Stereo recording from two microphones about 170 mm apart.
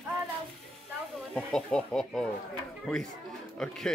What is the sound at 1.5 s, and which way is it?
Speech, 5° left (ahead or behind).